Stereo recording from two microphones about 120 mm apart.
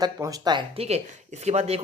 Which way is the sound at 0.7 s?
55° right (ahead or behind).